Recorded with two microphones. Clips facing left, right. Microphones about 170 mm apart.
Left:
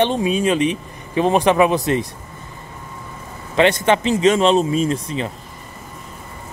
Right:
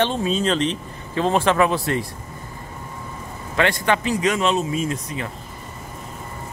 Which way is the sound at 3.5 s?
20° left (ahead or behind).